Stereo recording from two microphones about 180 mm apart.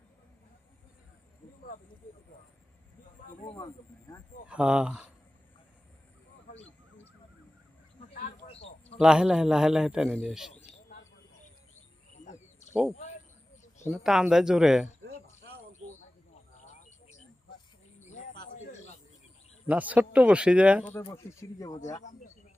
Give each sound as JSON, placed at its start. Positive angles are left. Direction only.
{"t": 3.4, "sound": "speech", "side_deg": 25}
{"t": 4.4, "sound": "a man's voice", "side_deg": -5}
{"t": 8.4, "sound": "a sound", "side_deg": 35}
{"t": 9.0, "sound": "a man's voice", "side_deg": -5}
{"t": 12.2, "sound": "bird", "side_deg": 40}
{"t": 13.9, "sound": "a man's voice", "side_deg": 0}
{"t": 19.6, "sound": "a man's voice", "side_deg": -10}
{"t": 21.2, "sound": "speech", "side_deg": 20}